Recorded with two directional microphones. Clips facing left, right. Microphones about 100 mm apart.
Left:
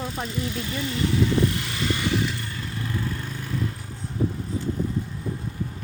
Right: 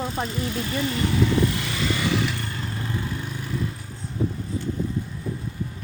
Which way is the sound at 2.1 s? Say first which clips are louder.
Right 1 dB; 90° right.